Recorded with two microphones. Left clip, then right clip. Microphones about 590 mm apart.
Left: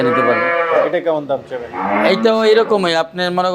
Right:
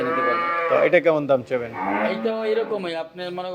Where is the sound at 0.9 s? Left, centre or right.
Right.